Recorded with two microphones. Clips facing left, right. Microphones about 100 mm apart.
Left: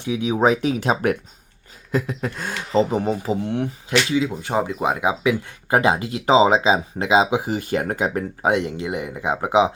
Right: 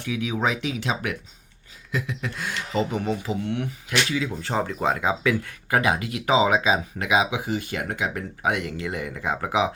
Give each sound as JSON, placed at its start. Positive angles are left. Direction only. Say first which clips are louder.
{"t": 0.0, "sound": "speech", "louder": "left 5 dB", "side_deg": 25}
{"t": 0.3, "sound": "speech", "louder": "left 9 dB", "side_deg": 35}